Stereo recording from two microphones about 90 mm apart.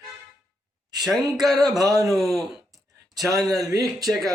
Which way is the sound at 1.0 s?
5° right (ahead or behind).